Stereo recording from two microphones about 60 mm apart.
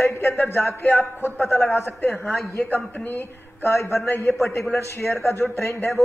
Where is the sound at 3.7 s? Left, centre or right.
Left.